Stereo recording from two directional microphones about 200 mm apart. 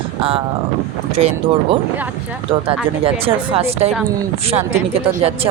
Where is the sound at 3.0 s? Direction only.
30° right (ahead or behind).